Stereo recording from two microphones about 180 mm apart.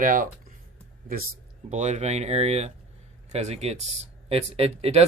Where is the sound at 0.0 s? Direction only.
50° right (ahead or behind).